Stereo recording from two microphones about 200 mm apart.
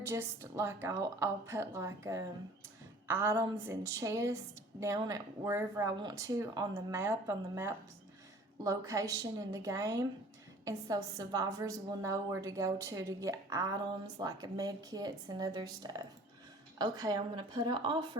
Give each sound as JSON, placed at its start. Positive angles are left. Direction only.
{"t": 0.1, "sound": "a woman's voice", "side_deg": -15}